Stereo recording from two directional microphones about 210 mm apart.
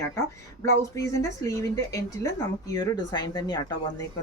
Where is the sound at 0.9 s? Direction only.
15° left (ahead or behind).